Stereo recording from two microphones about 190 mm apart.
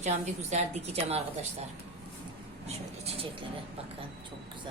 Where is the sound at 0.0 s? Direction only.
35° right (ahead or behind).